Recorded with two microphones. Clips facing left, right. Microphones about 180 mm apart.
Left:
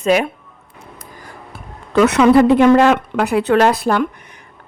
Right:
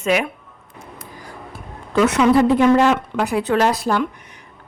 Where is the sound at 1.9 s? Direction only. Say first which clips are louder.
Left 4 dB; 65° left (ahead or behind).